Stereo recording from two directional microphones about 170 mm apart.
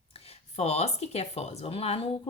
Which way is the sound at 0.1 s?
35° left (ahead or behind).